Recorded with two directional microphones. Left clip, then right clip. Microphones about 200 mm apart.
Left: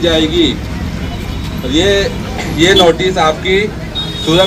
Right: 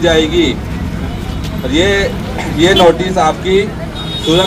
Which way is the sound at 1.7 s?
50° left (ahead or behind).